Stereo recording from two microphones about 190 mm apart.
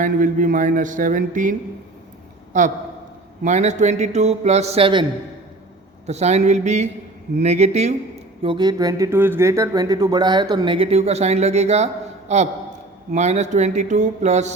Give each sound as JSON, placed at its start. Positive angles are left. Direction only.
{"t": 0.0, "sound": "a man's voice", "side_deg": -45}
{"t": 6.1, "sound": "speech", "side_deg": -35}
{"t": 8.4, "sound": "speech", "side_deg": -25}